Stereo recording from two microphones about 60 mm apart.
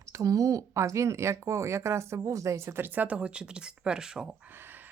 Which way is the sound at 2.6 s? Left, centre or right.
Right.